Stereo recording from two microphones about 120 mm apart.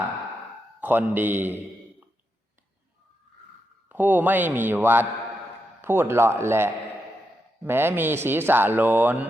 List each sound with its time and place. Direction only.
0.8 s speech: 15° right (ahead or behind)
3.8 s speech: 15° right (ahead or behind)